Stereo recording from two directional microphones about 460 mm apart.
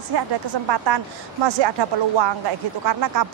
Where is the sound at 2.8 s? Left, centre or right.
Right.